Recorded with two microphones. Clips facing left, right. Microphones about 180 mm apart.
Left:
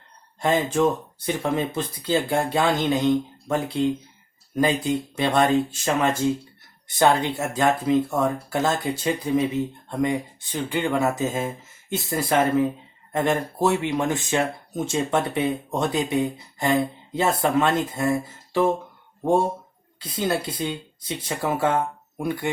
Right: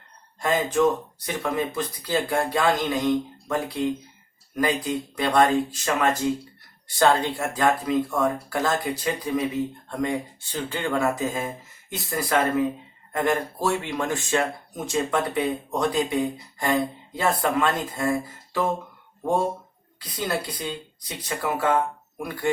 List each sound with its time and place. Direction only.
0.4 s speech: 30° left (ahead or behind)
20.0 s speech: 25° left (ahead or behind)